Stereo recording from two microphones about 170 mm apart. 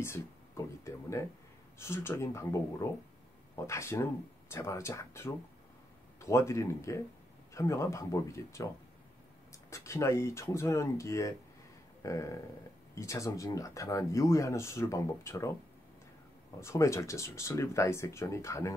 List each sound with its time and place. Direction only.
0.6 s a sound: 15° left (ahead or behind)
1.8 s speech: 15° left (ahead or behind)
16.5 s speech: 15° left (ahead or behind)